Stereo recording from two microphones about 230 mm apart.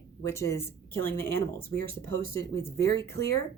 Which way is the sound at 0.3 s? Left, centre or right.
Centre.